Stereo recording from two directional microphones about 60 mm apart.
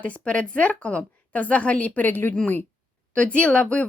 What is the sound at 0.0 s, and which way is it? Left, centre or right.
A woman's voice, centre.